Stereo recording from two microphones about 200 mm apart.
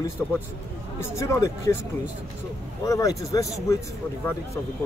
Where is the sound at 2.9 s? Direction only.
15° left (ahead or behind).